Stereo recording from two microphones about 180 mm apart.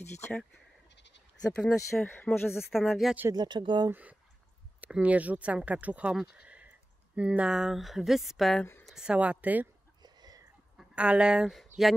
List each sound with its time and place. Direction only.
0.2 s speech: 5° left (ahead or behind)
0.9 s sheep: 80° left
1.6 s speech: centre (ahead or behind)
2.5 s speech: centre (ahead or behind)
3.3 s speech: 25° right (ahead or behind)
3.9 s speech: 10° right (ahead or behind)
6.3 s a sound: 5° right (ahead or behind)
7.2 s speech: 5° right (ahead or behind)
10.0 s a sound: 20° right (ahead or behind)
10.8 s speech: 5° right (ahead or behind)